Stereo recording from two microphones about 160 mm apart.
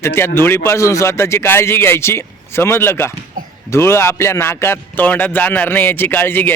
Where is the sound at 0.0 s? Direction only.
15° left (ahead or behind).